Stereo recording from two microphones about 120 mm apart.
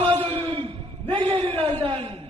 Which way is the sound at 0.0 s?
50° right (ahead or behind).